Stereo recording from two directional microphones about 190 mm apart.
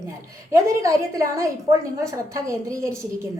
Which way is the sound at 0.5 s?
15° right (ahead or behind).